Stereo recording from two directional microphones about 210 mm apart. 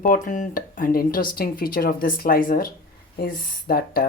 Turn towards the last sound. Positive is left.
turn(degrees=45)  # may be behind; listen again after turning